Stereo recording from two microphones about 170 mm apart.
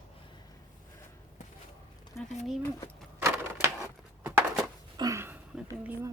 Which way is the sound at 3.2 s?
15° right (ahead or behind).